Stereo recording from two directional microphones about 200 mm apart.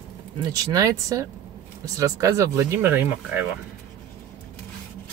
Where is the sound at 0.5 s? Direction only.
15° right (ahead or behind).